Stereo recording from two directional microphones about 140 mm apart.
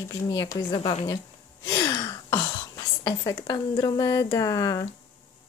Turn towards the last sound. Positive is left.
turn(degrees=25)  # may be behind; listen again after turning